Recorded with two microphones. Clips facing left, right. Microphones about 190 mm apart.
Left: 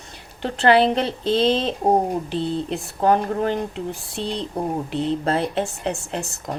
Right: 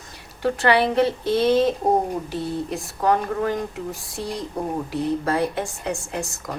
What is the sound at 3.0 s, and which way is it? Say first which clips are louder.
A woman's voice: left 2 dB; 30° left (ahead or behind).